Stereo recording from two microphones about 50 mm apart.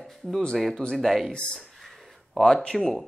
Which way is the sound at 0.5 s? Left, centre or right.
Centre.